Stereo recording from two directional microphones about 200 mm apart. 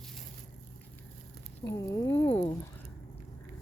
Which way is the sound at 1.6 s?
15° left (ahead or behind).